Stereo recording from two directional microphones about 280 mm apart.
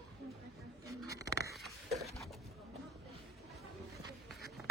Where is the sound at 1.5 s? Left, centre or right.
Centre.